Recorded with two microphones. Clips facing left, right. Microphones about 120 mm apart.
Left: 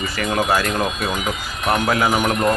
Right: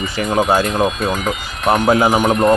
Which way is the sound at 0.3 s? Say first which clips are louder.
Right 4 dB; 25° right (ahead or behind).